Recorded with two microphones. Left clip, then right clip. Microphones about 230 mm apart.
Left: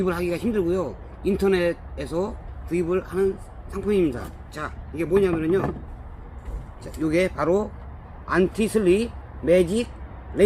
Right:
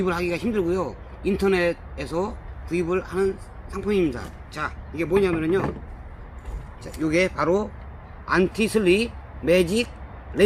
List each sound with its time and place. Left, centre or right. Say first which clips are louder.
0.0 s a man's voice: even; centre
6.8 s a man's voice: even; centre